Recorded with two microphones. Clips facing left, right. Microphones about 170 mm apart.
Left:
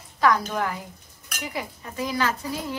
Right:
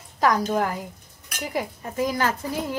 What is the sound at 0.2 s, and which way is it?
A woman's voice, 40° right (ahead or behind).